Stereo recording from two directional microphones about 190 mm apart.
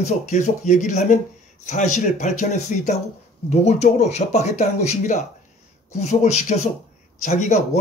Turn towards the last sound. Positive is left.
turn(degrees=40)  # may be behind; listen again after turning